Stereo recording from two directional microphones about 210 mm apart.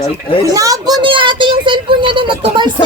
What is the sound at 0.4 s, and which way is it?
Speech, 15° right (ahead or behind).